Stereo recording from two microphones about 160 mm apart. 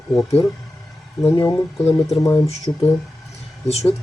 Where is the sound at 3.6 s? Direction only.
40° left (ahead or behind).